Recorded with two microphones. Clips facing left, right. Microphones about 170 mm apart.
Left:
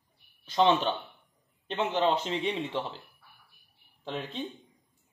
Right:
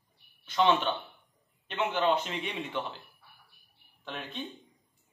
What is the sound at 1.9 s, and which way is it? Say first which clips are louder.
Speech: left 1 dB; 30° left (ahead or behind).